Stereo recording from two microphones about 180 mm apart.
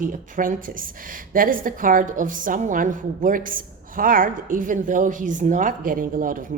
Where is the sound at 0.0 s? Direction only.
50° right (ahead or behind).